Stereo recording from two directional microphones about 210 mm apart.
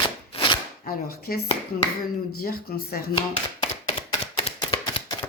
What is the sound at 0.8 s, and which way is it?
Speech, 45° left (ahead or behind).